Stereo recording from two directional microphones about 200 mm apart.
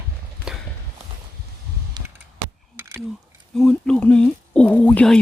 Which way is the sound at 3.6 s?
5° left (ahead or behind).